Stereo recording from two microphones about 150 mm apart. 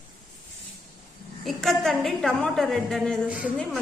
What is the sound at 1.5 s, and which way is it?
A woman's voice, centre (ahead or behind).